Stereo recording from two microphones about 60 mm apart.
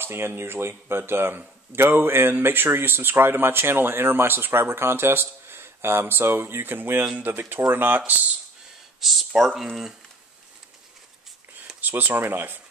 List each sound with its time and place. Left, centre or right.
0.0 s speech: right
9.0 s speech: centre
11.8 s speech: right